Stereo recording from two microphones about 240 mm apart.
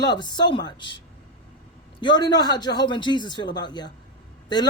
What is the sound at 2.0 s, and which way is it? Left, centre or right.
A man's voice, centre.